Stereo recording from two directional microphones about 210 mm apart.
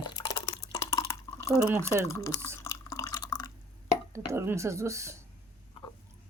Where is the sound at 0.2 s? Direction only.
15° left (ahead or behind).